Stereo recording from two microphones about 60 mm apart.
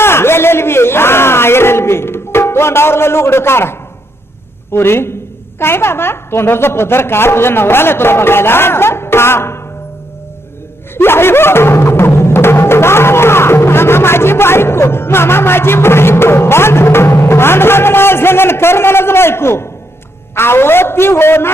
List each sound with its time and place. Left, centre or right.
0.0 s a sound: left
4.7 s a man's voice: left
10.9 s music: left
20.3 s a man's voice: left